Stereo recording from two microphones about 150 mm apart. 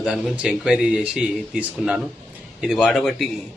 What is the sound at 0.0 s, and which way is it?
A man's voice, 5° right (ahead or behind).